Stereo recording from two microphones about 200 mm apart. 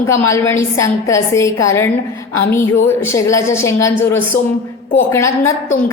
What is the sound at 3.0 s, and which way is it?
Speech, 15° left (ahead or behind).